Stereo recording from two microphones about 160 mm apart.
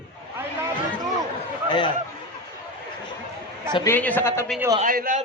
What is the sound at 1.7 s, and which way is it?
Speech, 30° left (ahead or behind).